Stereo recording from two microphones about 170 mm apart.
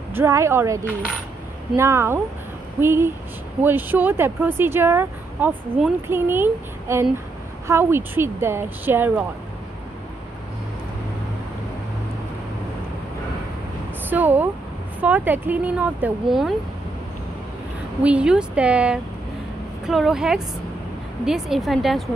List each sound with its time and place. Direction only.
0.1 s speech: 15° right (ahead or behind)
1.8 s speech: 15° right (ahead or behind)
14.0 s speech: 10° right (ahead or behind)
18.0 s a woman's voice: 5° right (ahead or behind)